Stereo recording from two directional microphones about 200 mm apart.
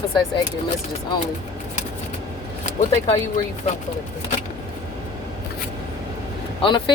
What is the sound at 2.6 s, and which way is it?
Speech, 30° left (ahead or behind).